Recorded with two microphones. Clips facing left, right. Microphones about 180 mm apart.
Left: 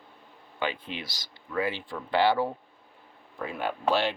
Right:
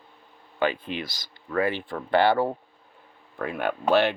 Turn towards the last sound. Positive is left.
turn(degrees=-60)  # may be behind; listen again after turning